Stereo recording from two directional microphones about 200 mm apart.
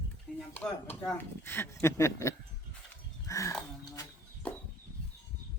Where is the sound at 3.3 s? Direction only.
15° left (ahead or behind).